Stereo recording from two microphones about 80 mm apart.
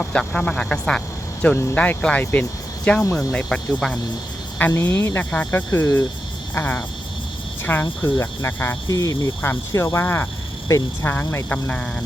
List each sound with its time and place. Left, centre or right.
0.0 s speech: centre
4.7 s speech: left
8.9 s speech: left
9.4 s speech: left; by 12.0 s centre